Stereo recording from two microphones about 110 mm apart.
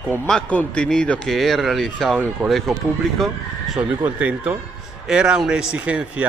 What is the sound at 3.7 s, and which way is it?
A man's voice, 10° right (ahead or behind).